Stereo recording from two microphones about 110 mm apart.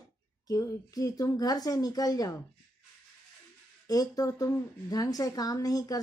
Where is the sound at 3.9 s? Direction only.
35° left (ahead or behind).